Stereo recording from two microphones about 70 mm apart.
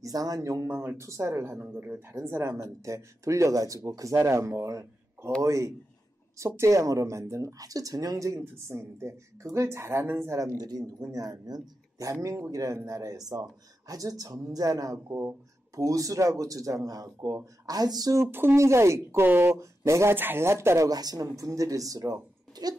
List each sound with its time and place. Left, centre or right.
0.0 s speech: right
7.5 s speech: right
8.4 s speech: right
10.6 s speech: right
11.0 s speech: right
12.1 s speech: right
15.0 s speech: right
15.7 s speech: right
18.2 s speech: right
19.2 s speech: right
19.5 s speech: right
20.2 s speech: right
20.9 s speech: right